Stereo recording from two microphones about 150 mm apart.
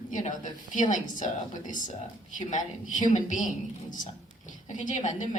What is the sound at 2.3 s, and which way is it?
A woman's voice, 55° left (ahead or behind).